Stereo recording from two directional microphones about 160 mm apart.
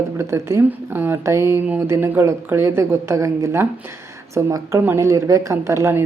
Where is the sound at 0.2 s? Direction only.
15° right (ahead or behind).